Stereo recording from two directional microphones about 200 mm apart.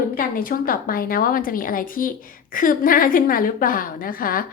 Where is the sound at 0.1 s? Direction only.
45° left (ahead or behind).